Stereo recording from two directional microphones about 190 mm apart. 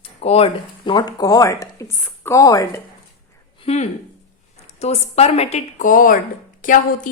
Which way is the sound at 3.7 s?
30° left (ahead or behind).